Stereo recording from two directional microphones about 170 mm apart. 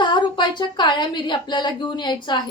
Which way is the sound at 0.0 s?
25° left (ahead or behind).